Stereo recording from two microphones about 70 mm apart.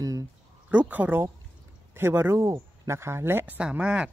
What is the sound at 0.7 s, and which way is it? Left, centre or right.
Speech, right.